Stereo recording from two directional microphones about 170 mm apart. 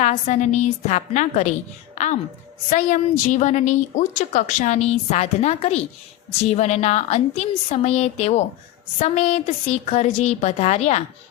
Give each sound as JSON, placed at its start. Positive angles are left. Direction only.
{"t": 0.0, "sound": "a woman's voice", "side_deg": 45}